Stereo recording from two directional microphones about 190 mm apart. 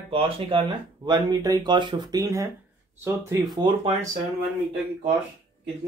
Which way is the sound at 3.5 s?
25° right (ahead or behind).